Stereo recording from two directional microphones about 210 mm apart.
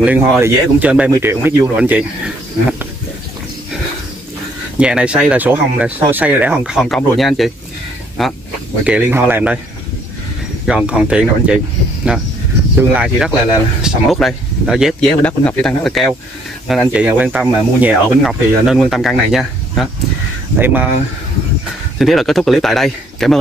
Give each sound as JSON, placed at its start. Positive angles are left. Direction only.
{"t": 0.0, "sound": "speech", "side_deg": -5}
{"t": 4.7, "sound": "speech", "side_deg": -5}
{"t": 10.7, "sound": "speech", "side_deg": -5}
{"t": 21.9, "sound": "speech", "side_deg": 0}